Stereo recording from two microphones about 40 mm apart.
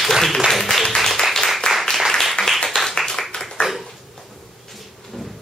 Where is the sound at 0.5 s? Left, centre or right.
Centre.